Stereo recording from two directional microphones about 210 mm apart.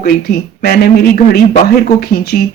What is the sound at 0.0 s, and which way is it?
Speech, 50° left (ahead or behind).